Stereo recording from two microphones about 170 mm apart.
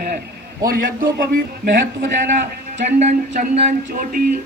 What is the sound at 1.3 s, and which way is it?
Speech, 55° right (ahead or behind).